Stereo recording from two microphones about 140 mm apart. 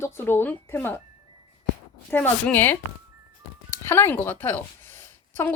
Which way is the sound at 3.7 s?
15° left (ahead or behind).